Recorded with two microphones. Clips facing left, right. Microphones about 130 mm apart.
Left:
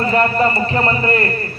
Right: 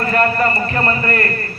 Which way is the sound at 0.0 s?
20° left (ahead or behind).